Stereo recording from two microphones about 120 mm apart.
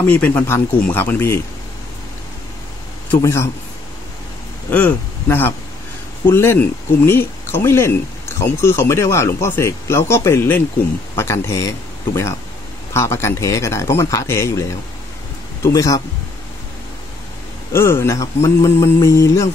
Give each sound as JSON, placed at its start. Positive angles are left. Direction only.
{"t": 0.0, "sound": "speech", "side_deg": 15}
{"t": 3.2, "sound": "speech", "side_deg": 25}
{"t": 4.6, "sound": "speech", "side_deg": 15}
{"t": 17.7, "sound": "speech", "side_deg": 20}